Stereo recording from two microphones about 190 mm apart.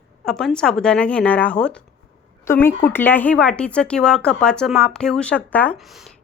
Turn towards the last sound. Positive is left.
turn(degrees=0)  # may be behind; listen again after turning